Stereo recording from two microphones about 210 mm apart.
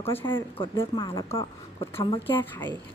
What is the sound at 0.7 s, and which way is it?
Speech, 15° left (ahead or behind).